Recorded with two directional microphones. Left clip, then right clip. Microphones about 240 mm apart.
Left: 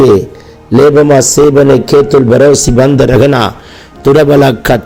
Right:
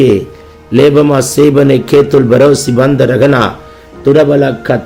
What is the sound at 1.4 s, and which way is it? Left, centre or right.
A man's voice, centre.